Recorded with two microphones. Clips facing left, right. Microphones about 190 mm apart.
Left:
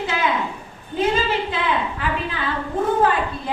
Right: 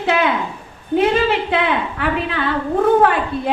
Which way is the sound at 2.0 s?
65° right (ahead or behind).